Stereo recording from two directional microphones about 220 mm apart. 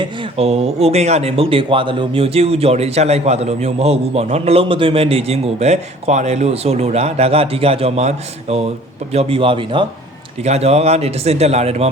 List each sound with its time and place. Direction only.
0.0 s speech: 25° right (ahead or behind)